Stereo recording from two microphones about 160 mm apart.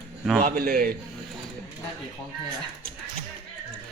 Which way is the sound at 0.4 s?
65° right (ahead or behind).